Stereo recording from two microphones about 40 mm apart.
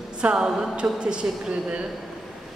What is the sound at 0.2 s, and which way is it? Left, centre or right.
Speech, right.